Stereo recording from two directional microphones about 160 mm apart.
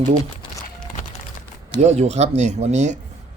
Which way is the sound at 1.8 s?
45° right (ahead or behind).